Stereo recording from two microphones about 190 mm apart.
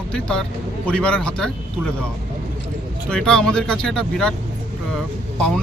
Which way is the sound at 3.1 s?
5° left (ahead or behind).